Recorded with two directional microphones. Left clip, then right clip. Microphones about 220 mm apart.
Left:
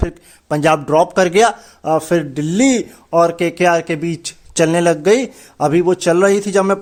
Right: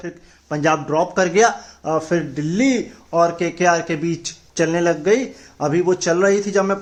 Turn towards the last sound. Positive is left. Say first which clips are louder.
# left 3 dB
turn(degrees=45)  # may be behind; listen again after turning